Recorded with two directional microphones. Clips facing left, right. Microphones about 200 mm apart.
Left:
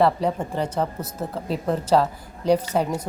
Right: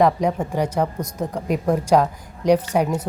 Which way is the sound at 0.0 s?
10° right (ahead or behind).